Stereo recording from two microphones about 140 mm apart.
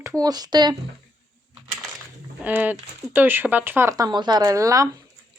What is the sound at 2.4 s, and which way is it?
Speech, 10° right (ahead or behind).